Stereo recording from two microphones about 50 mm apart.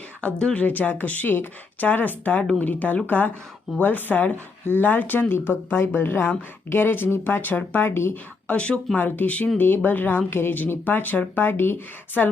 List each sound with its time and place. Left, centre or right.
0.2 s speech: left
0.6 s speech: left
8.5 s speech: centre
9.0 s speech: left
9.6 s speech: left